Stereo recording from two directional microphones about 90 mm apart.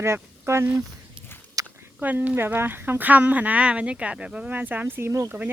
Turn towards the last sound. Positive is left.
turn(degrees=-20)  # may be behind; listen again after turning